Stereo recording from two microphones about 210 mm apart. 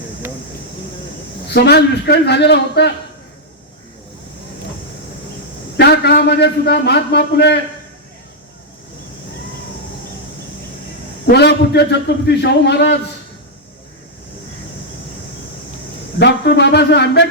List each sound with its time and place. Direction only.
1.5 s a man's voice: 50° left (ahead or behind)
5.7 s a man's voice: 50° left (ahead or behind)
11.3 s a man's voice: 50° left (ahead or behind)
16.1 s a man's voice: 55° left (ahead or behind)